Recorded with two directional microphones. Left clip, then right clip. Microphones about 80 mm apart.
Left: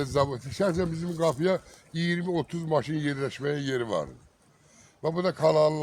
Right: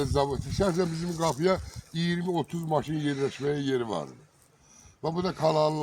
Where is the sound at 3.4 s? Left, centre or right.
Left.